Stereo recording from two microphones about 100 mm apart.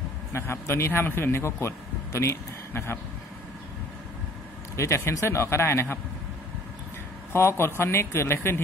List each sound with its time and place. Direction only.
0.3 s a man's voice: 25° left (ahead or behind)
4.7 s speech: 30° left (ahead or behind)
7.3 s speech: 25° left (ahead or behind)